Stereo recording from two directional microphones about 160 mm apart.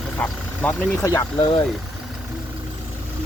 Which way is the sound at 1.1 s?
20° left (ahead or behind).